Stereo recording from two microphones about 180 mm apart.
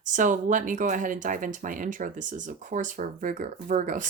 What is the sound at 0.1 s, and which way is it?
Speech, 45° right (ahead or behind).